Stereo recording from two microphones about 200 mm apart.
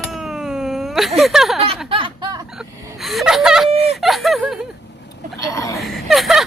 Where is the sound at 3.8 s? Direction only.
Centre (ahead or behind).